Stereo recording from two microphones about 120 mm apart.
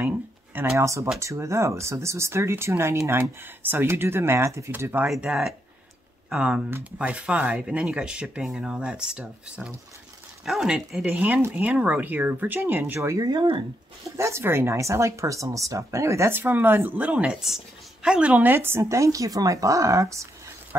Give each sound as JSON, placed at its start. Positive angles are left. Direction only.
{"t": 0.6, "sound": "speech", "side_deg": -25}
{"t": 5.1, "sound": "speech", "side_deg": -5}
{"t": 14.0, "sound": "speech", "side_deg": -25}